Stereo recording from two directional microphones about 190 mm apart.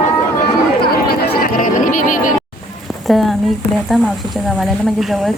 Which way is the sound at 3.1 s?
Centre (ahead or behind).